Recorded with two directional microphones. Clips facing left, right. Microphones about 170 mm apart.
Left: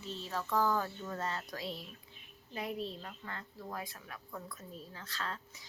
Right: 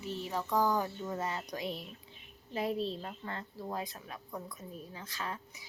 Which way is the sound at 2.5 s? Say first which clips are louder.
Right 5 dB; 30° right (ahead or behind).